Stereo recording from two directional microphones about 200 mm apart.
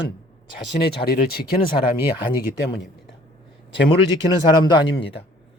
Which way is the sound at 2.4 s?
60° left (ahead or behind).